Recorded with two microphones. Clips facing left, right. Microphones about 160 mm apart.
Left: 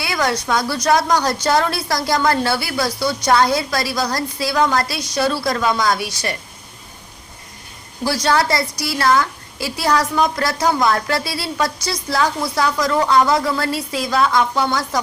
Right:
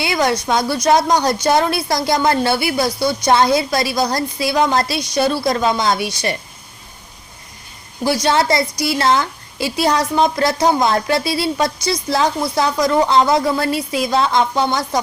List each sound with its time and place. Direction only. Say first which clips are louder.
0.0 s a woman's voice: right 3 dB; 20° right (ahead or behind)
8.0 s a woman's voice: right 2 dB; 20° right (ahead or behind)